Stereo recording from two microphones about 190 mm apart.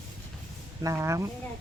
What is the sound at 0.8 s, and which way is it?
Speech, 15° right (ahead or behind).